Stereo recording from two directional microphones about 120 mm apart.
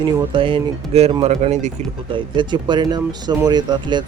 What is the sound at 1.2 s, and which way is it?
Speech, 75° right (ahead or behind).